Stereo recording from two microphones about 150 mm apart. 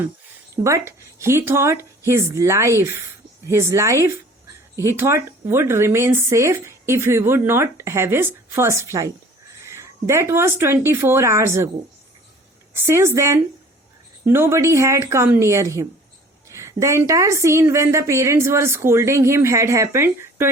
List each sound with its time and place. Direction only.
0.5 s a woman's voice: 20° right (ahead or behind)
12.7 s a woman's voice: 15° right (ahead or behind)